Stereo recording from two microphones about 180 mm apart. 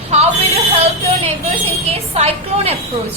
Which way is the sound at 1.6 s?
35° right (ahead or behind).